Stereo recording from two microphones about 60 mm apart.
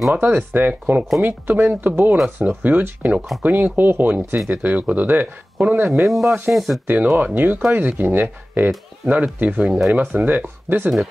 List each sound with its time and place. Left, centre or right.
0.1 s speech: right
5.9 s speech: centre
6.9 s speech: right